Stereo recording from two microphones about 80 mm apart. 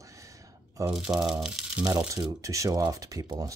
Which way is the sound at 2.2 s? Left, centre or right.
Right.